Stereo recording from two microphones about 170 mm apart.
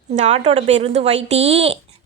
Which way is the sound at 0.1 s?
45° right (ahead or behind).